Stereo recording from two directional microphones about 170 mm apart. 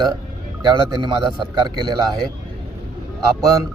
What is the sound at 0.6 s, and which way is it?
Speech, 25° right (ahead or behind).